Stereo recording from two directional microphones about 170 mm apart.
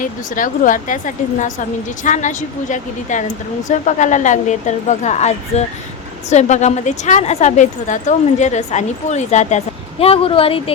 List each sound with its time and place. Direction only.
0.0 s a woman's voice: 50° left (ahead or behind); by 10.8 s 35° left (ahead or behind)